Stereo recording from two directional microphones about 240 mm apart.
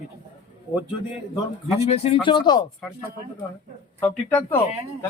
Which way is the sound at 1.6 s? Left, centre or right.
Left.